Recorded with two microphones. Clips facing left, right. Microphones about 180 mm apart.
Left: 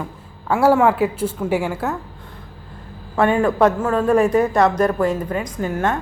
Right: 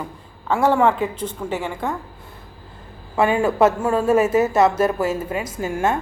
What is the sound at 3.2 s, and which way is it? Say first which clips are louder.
Speech: left 1 dB; 5° right (ahead or behind).